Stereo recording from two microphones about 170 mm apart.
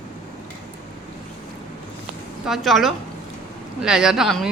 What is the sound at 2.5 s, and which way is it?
A woman's voice, centre (ahead or behind).